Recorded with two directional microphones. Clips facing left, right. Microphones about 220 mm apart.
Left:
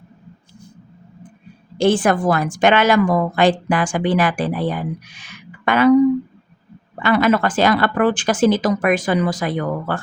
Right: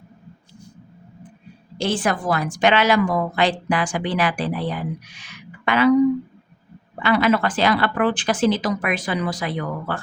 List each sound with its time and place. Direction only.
1.8 s a woman's voice: 50° left (ahead or behind)
7.0 s a woman's voice: 50° left (ahead or behind)